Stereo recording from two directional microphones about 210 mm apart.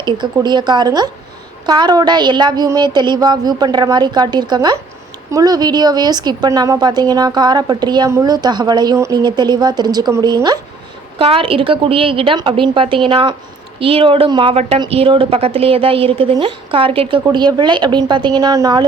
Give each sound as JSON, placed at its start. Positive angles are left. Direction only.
{"t": 0.0, "sound": "a woman's voice", "side_deg": -20}